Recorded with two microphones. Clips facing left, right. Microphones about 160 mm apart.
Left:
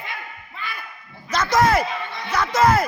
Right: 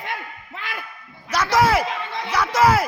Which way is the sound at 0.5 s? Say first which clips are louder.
Right 1 dB; 90° right.